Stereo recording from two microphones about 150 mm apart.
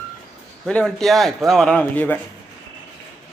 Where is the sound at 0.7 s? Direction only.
5° left (ahead or behind).